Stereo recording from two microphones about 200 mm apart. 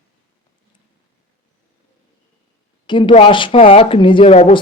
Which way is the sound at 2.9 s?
25° left (ahead or behind).